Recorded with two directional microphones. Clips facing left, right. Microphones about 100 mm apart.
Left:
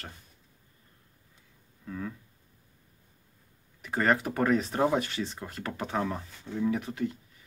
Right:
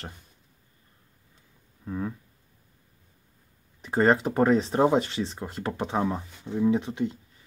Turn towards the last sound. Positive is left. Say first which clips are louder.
# right 5 dB
turn(degrees=-20)  # may be behind; listen again after turning